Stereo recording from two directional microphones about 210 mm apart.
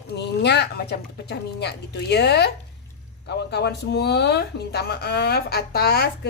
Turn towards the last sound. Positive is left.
turn(degrees=50)  # may be behind; listen again after turning